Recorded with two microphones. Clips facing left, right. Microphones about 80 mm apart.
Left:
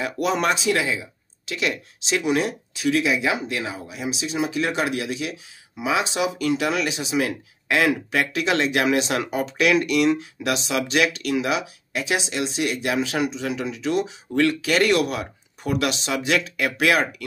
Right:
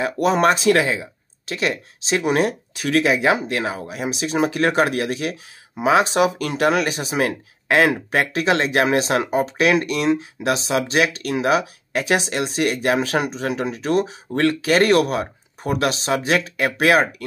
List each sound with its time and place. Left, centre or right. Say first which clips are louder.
0.0 s speech: right 5 dB; right
0.6 s speech: right 5 dB; right